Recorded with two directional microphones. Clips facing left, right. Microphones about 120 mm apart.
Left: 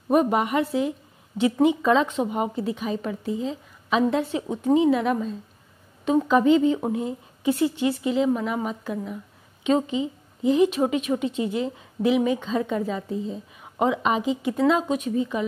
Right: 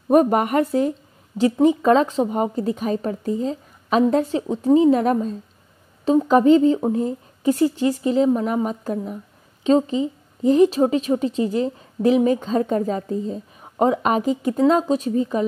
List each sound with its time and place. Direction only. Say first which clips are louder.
0.1 s a woman's voice: right 4 dB; 45° right (ahead or behind)